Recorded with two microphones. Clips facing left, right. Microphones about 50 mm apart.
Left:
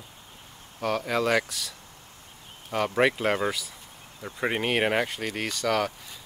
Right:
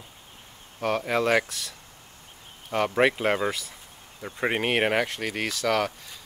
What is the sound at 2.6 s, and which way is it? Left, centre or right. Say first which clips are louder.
Speech: right 1 dB; centre.